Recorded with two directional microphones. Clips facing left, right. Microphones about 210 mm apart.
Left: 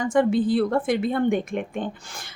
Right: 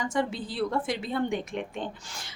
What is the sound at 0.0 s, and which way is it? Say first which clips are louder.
A woman's voice: left 9 dB; 55° left (ahead or behind).